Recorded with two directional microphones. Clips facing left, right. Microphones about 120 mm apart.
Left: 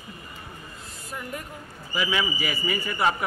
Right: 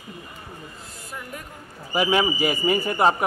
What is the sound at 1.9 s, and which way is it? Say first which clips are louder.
A man's voice: right 6 dB; 50° right (ahead or behind).